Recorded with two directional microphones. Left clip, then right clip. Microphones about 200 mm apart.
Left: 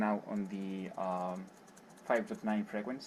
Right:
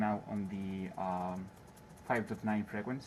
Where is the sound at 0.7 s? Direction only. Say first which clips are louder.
Left 1 dB; 35° left (ahead or behind).